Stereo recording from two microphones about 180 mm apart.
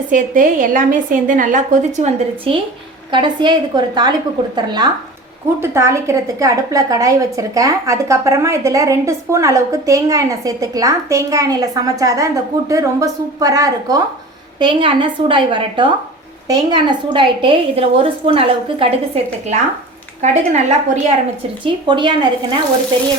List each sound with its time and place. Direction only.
0.1 s a woman's voice: 45° right (ahead or behind)
21.6 s a woman's voice: 25° right (ahead or behind)